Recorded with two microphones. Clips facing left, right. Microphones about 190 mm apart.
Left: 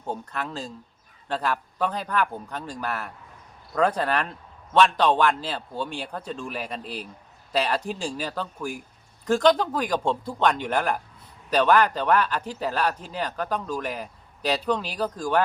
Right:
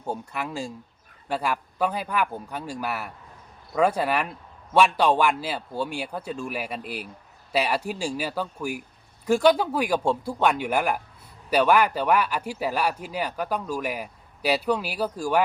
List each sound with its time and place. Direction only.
0.0 s speech: 10° right (ahead or behind)